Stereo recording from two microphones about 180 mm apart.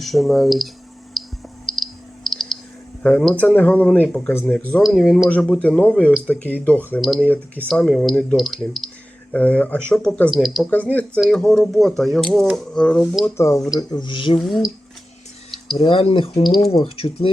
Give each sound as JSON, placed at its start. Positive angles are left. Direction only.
{"t": 0.0, "sound": "speech", "side_deg": 0}
{"t": 1.2, "sound": "a sound", "side_deg": 0}
{"t": 3.0, "sound": "speech", "side_deg": 5}
{"t": 14.4, "sound": "speech", "side_deg": 0}
{"t": 15.5, "sound": "a sound", "side_deg": 0}
{"t": 15.8, "sound": "speech", "side_deg": 30}